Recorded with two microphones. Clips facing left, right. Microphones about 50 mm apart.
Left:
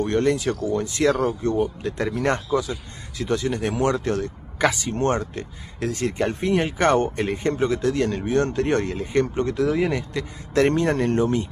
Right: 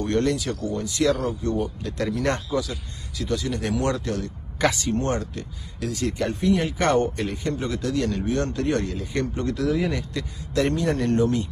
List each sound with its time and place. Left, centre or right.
0.0 s speech: left
4.6 s speech: centre
4.9 s speech: left